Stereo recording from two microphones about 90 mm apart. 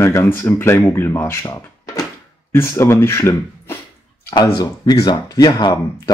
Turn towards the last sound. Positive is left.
turn(degrees=55)  # may be behind; listen again after turning